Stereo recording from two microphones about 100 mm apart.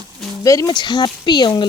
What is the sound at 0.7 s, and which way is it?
Speech, 45° left (ahead or behind).